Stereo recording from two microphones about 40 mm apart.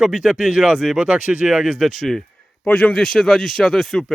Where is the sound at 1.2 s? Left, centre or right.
Right.